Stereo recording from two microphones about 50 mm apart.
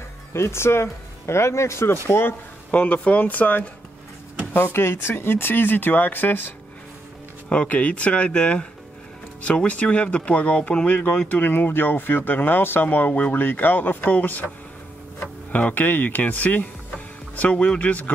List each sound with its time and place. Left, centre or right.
0.3 s speech: left
2.0 s speech: left
2.7 s speech: left
4.6 s speech: left
7.4 s speech: left
11.2 s speech: left
12.8 s speech: left